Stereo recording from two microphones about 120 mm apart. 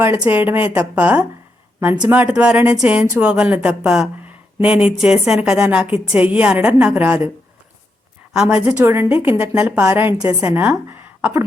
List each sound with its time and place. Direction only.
0.0 s a woman's voice: 15° right (ahead or behind)
8.3 s a woman's voice: 5° right (ahead or behind)
8.8 s a woman's voice: 20° right (ahead or behind)